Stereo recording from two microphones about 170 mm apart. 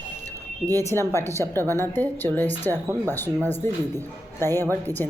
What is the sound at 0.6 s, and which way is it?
Speech, 20° right (ahead or behind).